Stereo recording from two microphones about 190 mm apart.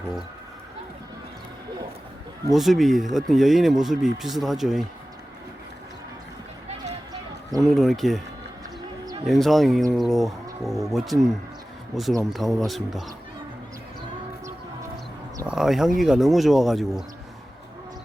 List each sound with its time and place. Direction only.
2.5 s speech: centre (ahead or behind)
7.1 s a sound: 20° right (ahead or behind)
7.7 s speech: centre (ahead or behind)
9.2 s speech: centre (ahead or behind)
15.4 s speech: centre (ahead or behind)